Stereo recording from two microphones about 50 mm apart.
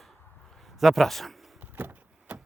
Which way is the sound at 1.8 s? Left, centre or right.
Right.